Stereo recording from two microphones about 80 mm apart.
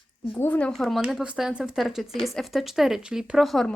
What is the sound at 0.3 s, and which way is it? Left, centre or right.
Speech, left.